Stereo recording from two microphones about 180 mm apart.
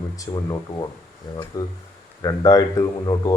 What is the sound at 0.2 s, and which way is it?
Speech, 20° left (ahead or behind).